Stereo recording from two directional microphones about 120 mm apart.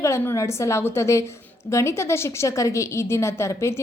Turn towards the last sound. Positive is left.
turn(degrees=25)  # may be behind; listen again after turning